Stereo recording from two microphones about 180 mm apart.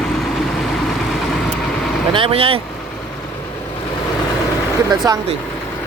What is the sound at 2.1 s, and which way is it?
Speech, 30° right (ahead or behind).